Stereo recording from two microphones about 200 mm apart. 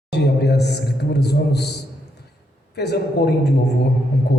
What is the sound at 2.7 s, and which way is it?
Speech, 55° left (ahead or behind).